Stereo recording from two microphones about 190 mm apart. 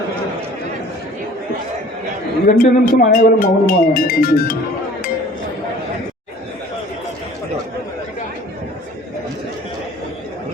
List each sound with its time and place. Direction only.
2.5 s speech: 45° left (ahead or behind)